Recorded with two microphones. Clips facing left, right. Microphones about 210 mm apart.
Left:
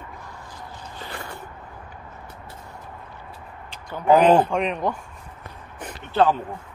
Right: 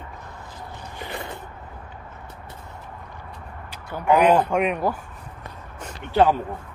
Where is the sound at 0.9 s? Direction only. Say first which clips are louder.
Right 3 dB; 20° right (ahead or behind).